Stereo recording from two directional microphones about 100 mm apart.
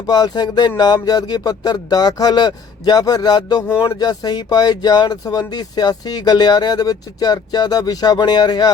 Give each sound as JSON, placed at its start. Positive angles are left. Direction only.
{"t": 0.1, "sound": "speech", "side_deg": 45}